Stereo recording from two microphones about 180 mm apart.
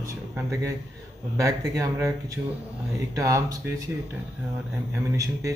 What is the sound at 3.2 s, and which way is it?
Speech, 20° right (ahead or behind).